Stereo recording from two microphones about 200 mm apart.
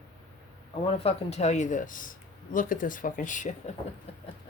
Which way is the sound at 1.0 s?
30° left (ahead or behind).